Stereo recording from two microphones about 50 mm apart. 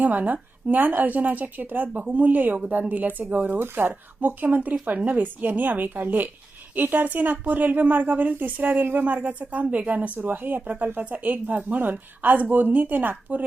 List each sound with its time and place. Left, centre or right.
0.0 s speech: right